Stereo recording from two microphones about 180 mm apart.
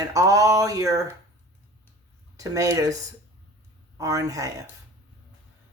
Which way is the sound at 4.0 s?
20° right (ahead or behind).